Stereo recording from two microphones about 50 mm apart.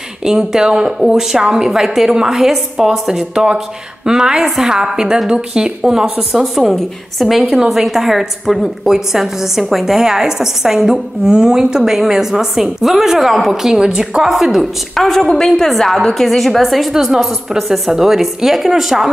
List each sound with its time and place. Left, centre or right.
0.2 s a woman's voice: centre
15.0 s a woman's voice: centre